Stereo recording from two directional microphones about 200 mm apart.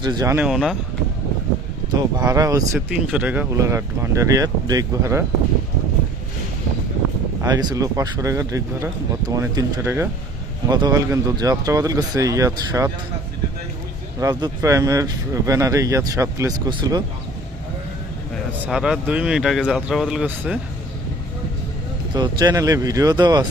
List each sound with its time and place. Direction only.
0.0 s speech: 20° right (ahead or behind)
0.4 s speech: centre (ahead or behind)
1.9 s speech: 20° right (ahead or behind)
7.4 s speech: 20° right (ahead or behind)
14.2 s speech: 15° right (ahead or behind)
18.6 s speech: 5° right (ahead or behind)
22.1 s speech: 20° right (ahead or behind)